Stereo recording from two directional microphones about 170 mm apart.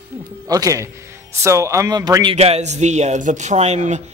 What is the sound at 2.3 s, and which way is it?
Speech, 35° right (ahead or behind).